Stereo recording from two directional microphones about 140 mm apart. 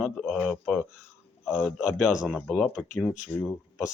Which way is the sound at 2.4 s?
10° left (ahead or behind).